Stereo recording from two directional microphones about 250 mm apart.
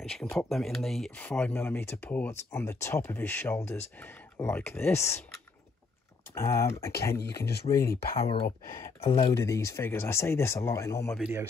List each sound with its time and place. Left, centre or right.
0.0 s speech: centre
6.3 s speech: centre
7.2 s speech: left
8.2 s speech: left
9.4 s speech: centre
11.1 s a man's voice: centre